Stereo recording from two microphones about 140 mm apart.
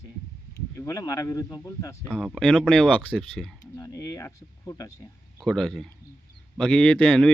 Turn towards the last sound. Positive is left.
turn(degrees=10)  # may be behind; listen again after turning